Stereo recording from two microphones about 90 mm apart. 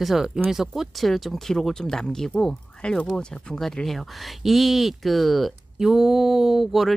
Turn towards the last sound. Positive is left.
turn(degrees=0)  # may be behind; listen again after turning